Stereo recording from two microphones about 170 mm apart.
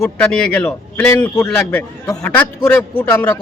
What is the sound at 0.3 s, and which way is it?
A man's voice, 10° left (ahead or behind).